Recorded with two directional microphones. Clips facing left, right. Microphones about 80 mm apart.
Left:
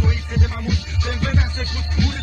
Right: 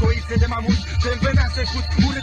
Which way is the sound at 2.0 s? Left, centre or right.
Right.